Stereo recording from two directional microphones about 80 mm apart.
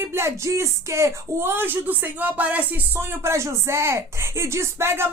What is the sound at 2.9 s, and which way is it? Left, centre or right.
Speech, right.